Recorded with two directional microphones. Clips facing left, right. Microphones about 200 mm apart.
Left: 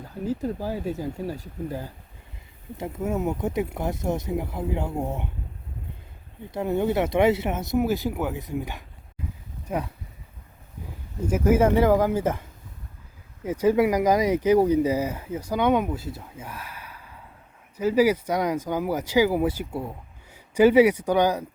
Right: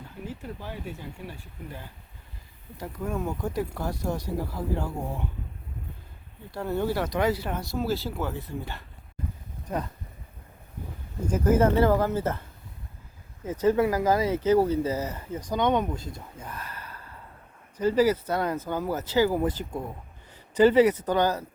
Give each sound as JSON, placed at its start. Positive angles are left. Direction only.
{"t": 0.3, "sound": "speech", "side_deg": 40}
{"t": 2.7, "sound": "speech", "side_deg": 25}
{"t": 6.5, "sound": "speech", "side_deg": 20}
{"t": 11.3, "sound": "speech", "side_deg": 10}